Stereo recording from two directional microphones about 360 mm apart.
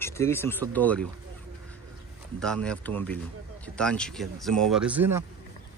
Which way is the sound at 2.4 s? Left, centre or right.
Centre.